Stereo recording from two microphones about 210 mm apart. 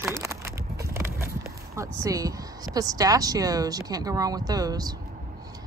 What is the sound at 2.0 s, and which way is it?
Speech, 15° right (ahead or behind).